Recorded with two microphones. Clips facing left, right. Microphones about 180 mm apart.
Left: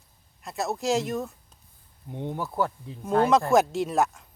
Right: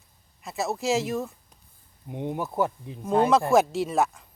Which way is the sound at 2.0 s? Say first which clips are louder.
Right 2 dB; 15° right (ahead or behind).